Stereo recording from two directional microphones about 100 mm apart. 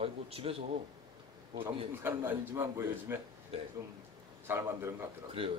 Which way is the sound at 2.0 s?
20° right (ahead or behind).